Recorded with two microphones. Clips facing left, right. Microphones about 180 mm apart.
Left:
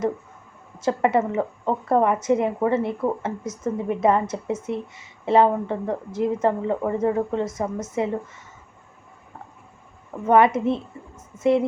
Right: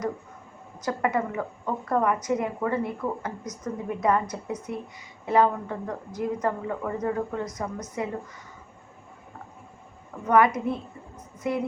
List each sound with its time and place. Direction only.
0.8 s a woman's voice: 25° left (ahead or behind)
10.2 s a woman's voice: 25° left (ahead or behind)